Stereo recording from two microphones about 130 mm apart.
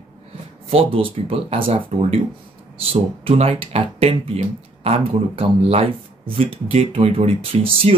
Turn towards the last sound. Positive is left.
turn(degrees=-45)  # may be behind; listen again after turning